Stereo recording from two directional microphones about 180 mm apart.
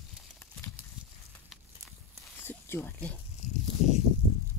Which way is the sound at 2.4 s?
15° left (ahead or behind).